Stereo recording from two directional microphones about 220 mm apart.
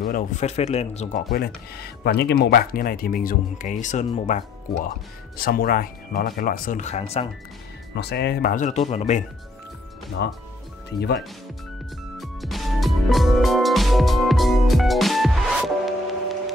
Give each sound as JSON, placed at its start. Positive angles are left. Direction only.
{"t": 0.0, "sound": "speech", "side_deg": 35}
{"t": 1.3, "sound": "speech", "side_deg": 45}
{"t": 5.4, "sound": "speech", "side_deg": 40}
{"t": 7.9, "sound": "speech", "side_deg": 50}
{"t": 10.2, "sound": "speech", "side_deg": 50}
{"t": 12.2, "sound": "music", "side_deg": 0}